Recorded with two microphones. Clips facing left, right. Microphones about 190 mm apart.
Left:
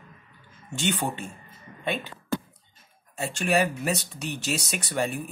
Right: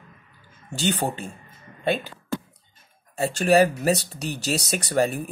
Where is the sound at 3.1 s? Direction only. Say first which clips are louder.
Right 6 dB; 35° right (ahead or behind).